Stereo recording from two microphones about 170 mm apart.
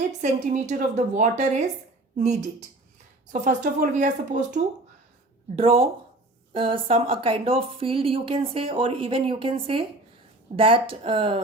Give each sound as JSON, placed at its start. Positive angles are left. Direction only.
{"t": 0.2, "sound": "a woman's voice", "side_deg": -45}
{"t": 5.5, "sound": "a woman's voice", "side_deg": -35}